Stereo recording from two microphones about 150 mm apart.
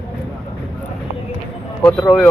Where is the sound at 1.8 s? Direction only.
5° left (ahead or behind).